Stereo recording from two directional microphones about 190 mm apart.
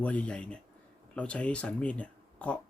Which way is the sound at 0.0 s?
5° left (ahead or behind).